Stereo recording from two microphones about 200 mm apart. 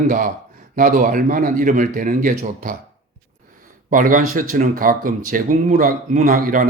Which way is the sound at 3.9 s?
40° right (ahead or behind).